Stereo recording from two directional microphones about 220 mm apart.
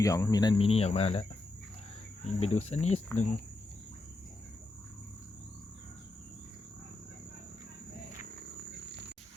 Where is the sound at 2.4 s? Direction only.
30° left (ahead or behind).